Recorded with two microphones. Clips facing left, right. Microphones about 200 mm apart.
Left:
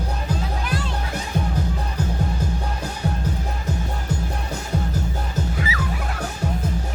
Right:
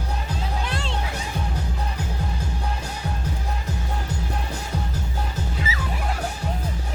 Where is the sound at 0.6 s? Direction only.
25° right (ahead or behind).